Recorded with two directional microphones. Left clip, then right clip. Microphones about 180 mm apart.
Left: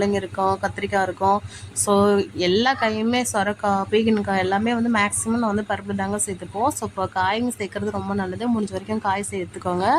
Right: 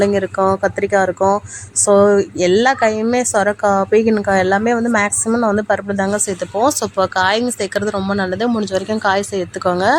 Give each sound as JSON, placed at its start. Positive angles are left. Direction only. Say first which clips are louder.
{"t": 0.0, "sound": "a woman's voice", "louder": "right 7 dB", "side_deg": -15}